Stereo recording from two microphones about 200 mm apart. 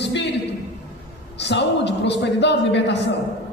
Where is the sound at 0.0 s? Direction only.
60° left (ahead or behind).